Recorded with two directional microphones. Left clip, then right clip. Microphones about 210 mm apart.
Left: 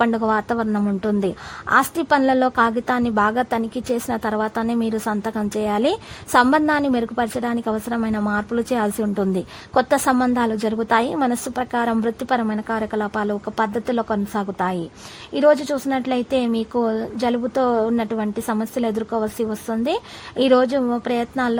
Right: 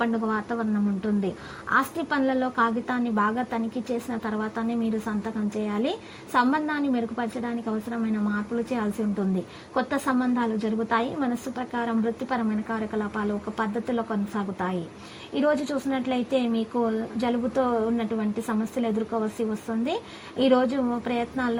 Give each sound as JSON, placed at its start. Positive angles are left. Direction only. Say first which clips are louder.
{"t": 0.0, "sound": "a woman's voice", "louder": "left 8 dB", "side_deg": 35}